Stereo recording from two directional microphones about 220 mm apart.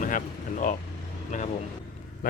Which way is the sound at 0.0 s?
35° left (ahead or behind).